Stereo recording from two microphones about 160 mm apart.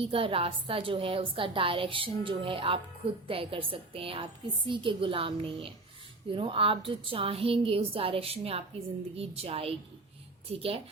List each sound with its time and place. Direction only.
0.0 s a woman's voice: 35° right (ahead or behind)